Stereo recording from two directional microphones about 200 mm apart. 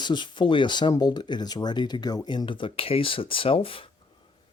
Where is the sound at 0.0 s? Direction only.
25° left (ahead or behind).